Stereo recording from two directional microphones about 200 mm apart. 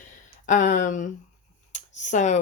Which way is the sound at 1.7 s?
35° left (ahead or behind).